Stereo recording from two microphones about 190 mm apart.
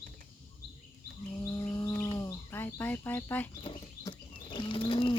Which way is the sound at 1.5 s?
10° left (ahead or behind).